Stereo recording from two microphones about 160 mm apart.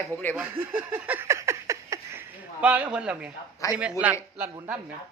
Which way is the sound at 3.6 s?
20° left (ahead or behind).